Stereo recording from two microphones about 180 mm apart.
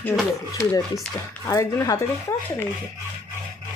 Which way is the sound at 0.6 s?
15° left (ahead or behind).